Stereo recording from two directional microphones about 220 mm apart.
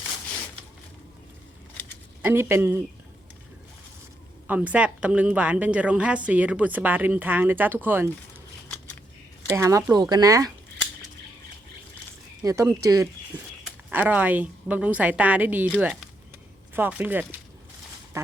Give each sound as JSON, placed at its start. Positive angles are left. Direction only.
{"t": 2.2, "sound": "a woman's voice", "side_deg": -10}
{"t": 4.4, "sound": "a woman's voice", "side_deg": -5}
{"t": 9.5, "sound": "a woman's voice", "side_deg": -15}
{"t": 12.4, "sound": "a woman's voice", "side_deg": -15}